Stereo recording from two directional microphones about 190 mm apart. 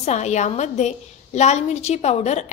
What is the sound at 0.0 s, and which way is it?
A woman's voice, 35° left (ahead or behind).